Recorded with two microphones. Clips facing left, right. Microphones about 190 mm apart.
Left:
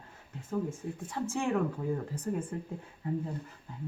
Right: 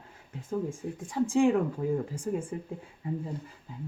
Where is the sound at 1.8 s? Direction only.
85° right.